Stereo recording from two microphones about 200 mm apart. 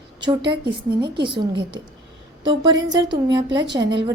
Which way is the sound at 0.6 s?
20° right (ahead or behind).